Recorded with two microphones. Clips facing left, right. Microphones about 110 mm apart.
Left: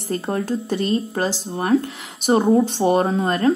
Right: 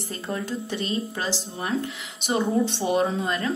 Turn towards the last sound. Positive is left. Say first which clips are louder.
# left 7 dB
turn(degrees=45)  # may be behind; listen again after turning